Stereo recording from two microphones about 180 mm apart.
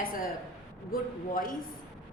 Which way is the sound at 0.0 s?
50° left (ahead or behind).